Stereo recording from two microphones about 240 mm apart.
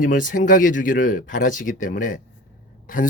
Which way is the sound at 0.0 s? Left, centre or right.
Left.